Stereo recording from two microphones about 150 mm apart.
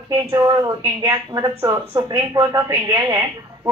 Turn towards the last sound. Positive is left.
turn(degrees=-25)  # may be behind; listen again after turning